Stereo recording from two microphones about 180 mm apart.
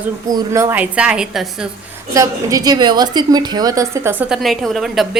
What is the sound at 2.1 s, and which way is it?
A woman's voice, 20° right (ahead or behind).